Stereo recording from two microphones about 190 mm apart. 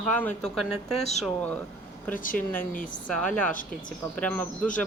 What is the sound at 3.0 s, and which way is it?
Speech, 5° left (ahead or behind).